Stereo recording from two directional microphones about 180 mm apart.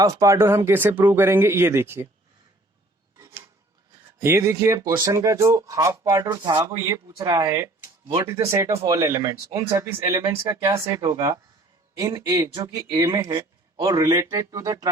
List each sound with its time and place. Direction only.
0.0 s speech: 20° right (ahead or behind)
3.2 s a sound: 15° right (ahead or behind)
4.2 s speech: 15° right (ahead or behind)